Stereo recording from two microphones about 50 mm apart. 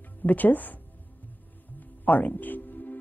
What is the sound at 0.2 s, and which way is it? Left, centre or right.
Speech, left.